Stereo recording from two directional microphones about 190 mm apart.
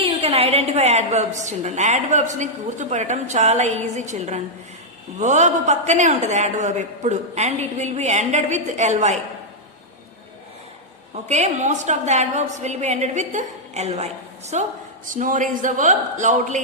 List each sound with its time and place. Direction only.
0.0 s a woman's voice: 30° right (ahead or behind)
11.1 s a woman's voice: 35° right (ahead or behind)